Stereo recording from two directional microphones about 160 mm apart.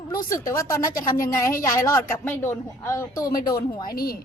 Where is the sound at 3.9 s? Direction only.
70° left (ahead or behind).